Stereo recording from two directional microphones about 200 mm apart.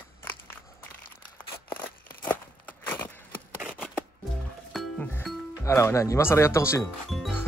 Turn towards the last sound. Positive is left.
turn(degrees=0)  # may be behind; listen again after turning